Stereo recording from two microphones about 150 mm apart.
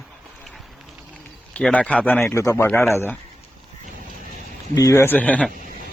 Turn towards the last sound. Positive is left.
turn(degrees=10)  # may be behind; listen again after turning